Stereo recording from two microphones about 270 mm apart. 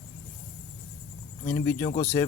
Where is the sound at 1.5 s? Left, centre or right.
Centre.